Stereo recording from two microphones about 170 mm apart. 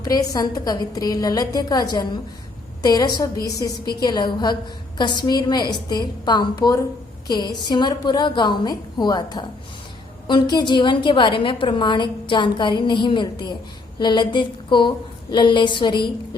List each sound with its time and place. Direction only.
0.0 s a woman's voice: 20° left (ahead or behind)